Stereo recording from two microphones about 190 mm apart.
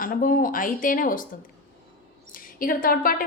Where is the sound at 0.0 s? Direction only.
45° left (ahead or behind).